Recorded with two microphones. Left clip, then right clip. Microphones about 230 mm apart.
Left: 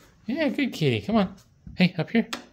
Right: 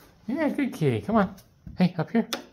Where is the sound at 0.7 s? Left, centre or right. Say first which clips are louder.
Left 1 dB; left.